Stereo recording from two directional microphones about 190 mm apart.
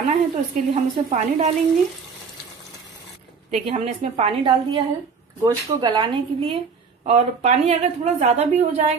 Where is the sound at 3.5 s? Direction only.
35° right (ahead or behind).